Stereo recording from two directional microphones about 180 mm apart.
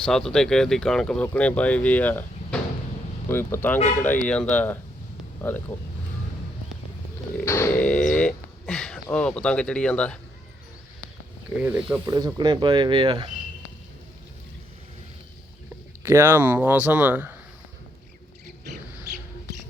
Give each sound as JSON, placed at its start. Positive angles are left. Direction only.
{"t": 0.0, "sound": "speech", "side_deg": 5}
{"t": 7.3, "sound": "speech", "side_deg": 15}
{"t": 11.4, "sound": "speech", "side_deg": -10}
{"t": 12.1, "sound": "speech", "side_deg": -20}
{"t": 16.0, "sound": "speech", "side_deg": -15}